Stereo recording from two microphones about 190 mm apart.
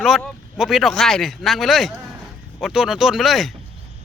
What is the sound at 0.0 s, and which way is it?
Speech, centre (ahead or behind).